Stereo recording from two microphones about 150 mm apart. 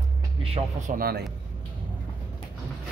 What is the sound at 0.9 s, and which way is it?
Speech, 80° right.